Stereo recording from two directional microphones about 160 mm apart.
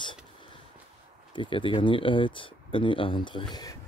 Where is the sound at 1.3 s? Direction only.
30° left (ahead or behind).